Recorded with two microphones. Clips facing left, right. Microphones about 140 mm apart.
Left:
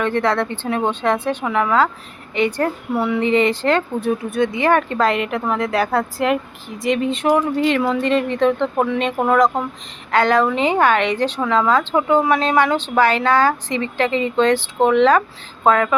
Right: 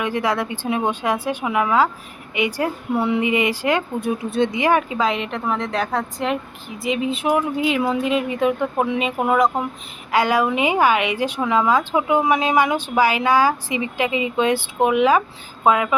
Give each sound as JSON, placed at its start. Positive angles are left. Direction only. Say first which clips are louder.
{"t": 0.0, "sound": "a woman's voice", "louder": "left 3 dB", "side_deg": -10}
{"t": 3.0, "sound": "a woman's voice", "louder": "left 3 dB", "side_deg": -15}
{"t": 4.3, "sound": "a woman's voice", "louder": "even", "side_deg": -25}